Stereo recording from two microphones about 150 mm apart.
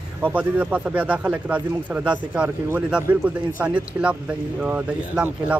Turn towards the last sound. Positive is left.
turn(degrees=-10)  # may be behind; listen again after turning